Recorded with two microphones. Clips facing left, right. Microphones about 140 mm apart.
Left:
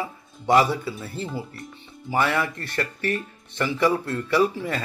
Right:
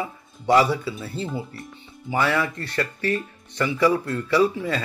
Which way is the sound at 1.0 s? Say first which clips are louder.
Right 2 dB; 20° right (ahead or behind).